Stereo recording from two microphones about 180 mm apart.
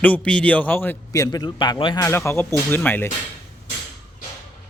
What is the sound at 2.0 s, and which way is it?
A man's voice, 15° left (ahead or behind).